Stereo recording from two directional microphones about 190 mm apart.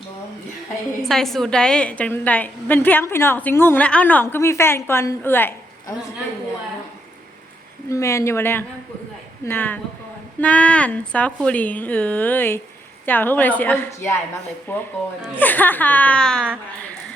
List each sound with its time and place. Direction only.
1.0 s a woman's voice: centre (ahead or behind)
7.9 s a woman's voice: 15° left (ahead or behind)